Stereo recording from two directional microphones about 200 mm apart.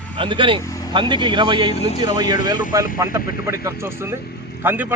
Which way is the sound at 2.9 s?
15° right (ahead or behind).